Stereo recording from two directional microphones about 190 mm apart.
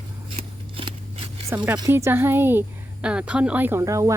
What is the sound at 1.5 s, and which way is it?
A woman's voice, 10° right (ahead or behind).